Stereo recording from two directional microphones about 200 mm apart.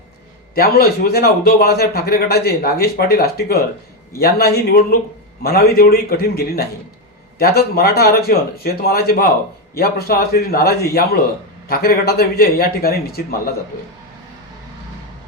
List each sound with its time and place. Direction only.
0.5 s a man's voice: 50° left (ahead or behind)